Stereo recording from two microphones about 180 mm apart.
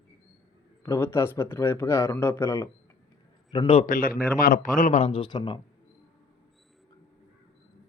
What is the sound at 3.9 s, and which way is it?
A man's voice, 50° left (ahead or behind).